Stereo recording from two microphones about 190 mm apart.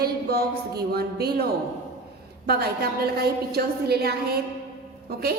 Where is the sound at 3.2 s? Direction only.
55° right (ahead or behind).